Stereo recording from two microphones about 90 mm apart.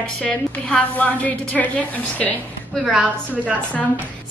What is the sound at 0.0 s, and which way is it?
A woman's voice, 10° left (ahead or behind).